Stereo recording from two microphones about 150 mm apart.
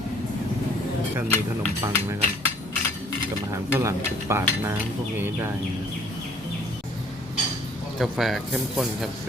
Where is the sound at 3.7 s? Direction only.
15° right (ahead or behind).